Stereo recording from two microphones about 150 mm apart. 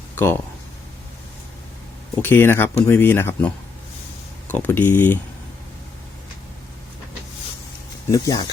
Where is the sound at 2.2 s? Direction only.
15° left (ahead or behind).